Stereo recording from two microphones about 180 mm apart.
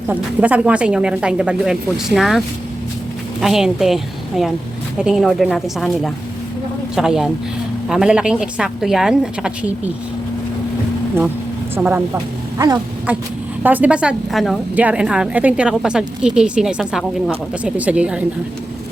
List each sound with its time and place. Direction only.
0.1 s a woman's voice: 10° right (ahead or behind)
3.4 s a woman's voice: centre (ahead or behind)
11.7 s speech: 10° right (ahead or behind)
12.1 s a woman's voice: 20° right (ahead or behind)